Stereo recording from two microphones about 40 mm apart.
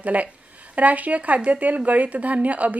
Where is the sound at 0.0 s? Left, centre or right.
Right.